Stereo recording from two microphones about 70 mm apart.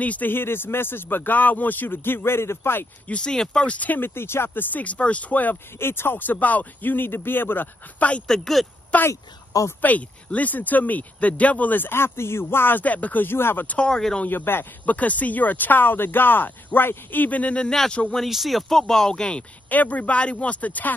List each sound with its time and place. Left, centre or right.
0.0 s speech: left
3.1 s speech: centre; by 4.6 s left
4.7 s speech: left
8.3 s speech: centre
9.1 s speech: left
9.8 s speech: left
13.7 s speech: centre
14.2 s speech: left; by 18.0 s centre
18.1 s speech: centre
19.7 s speech: left